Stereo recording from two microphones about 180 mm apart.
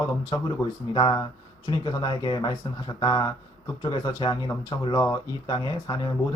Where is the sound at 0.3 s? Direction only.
25° left (ahead or behind).